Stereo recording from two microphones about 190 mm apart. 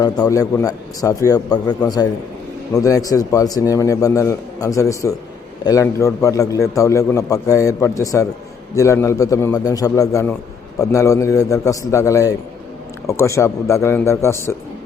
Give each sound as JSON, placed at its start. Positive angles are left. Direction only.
{"t": 0.0, "sound": "a man's voice", "side_deg": 20}